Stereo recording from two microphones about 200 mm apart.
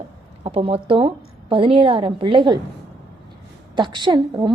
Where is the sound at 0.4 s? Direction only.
30° right (ahead or behind).